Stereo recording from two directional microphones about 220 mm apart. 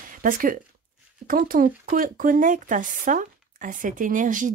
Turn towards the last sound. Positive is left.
turn(degrees=-35)  # may be behind; listen again after turning